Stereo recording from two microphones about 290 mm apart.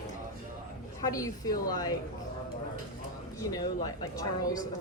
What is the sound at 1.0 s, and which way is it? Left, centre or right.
Speech, centre.